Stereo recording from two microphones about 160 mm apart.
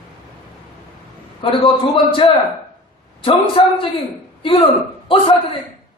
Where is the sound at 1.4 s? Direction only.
35° left (ahead or behind).